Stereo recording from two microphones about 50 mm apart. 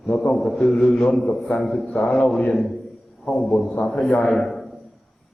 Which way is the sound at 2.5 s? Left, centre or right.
Centre.